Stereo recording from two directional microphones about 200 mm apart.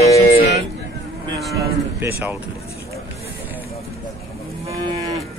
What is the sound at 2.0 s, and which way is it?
Speech, 10° right (ahead or behind).